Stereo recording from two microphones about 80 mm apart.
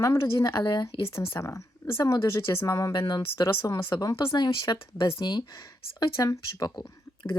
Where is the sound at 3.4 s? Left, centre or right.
Left.